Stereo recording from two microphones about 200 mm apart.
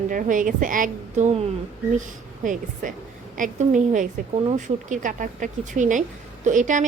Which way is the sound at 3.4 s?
40° right (ahead or behind).